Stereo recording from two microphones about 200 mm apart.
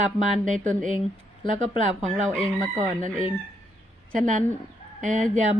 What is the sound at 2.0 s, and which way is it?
Speech, 35° right (ahead or behind).